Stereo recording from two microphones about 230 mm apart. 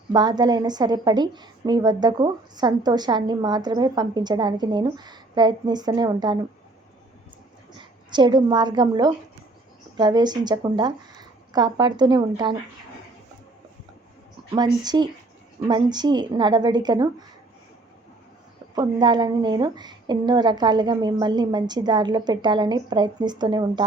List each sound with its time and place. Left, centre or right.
0.1 s a woman's voice: centre
7.7 s a woman's voice: centre
14.5 s a woman's voice: centre
18.7 s a woman's voice: centre